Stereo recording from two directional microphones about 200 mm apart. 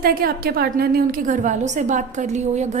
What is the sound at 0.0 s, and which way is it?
A woman's voice, 50° right (ahead or behind).